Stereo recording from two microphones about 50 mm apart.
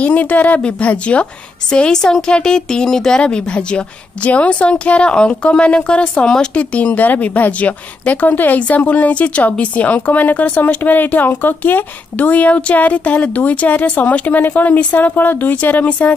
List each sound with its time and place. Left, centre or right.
0.0 s a woman's voice: left